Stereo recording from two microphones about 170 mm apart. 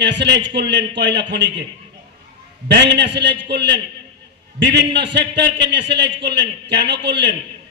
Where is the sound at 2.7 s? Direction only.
90° right.